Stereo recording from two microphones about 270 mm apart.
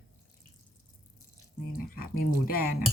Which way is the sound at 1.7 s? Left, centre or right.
Left.